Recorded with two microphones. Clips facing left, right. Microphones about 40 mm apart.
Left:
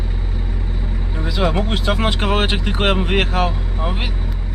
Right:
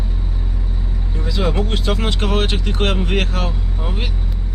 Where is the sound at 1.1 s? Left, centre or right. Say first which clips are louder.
Left 1 dB; centre.